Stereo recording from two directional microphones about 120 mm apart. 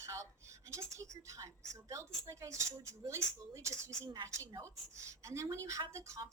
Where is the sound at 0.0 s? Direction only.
25° right (ahead or behind).